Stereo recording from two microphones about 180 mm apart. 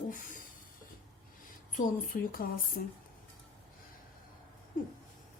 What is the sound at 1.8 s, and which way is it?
Speech, 50° left (ahead or behind).